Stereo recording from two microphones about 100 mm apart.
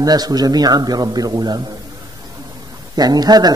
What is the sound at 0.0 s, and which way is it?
A man's voice, 40° right (ahead or behind).